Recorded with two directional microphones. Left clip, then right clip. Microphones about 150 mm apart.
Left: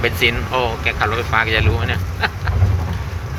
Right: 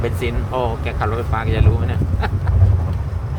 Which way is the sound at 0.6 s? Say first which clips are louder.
Left 4 dB; 20° right (ahead or behind).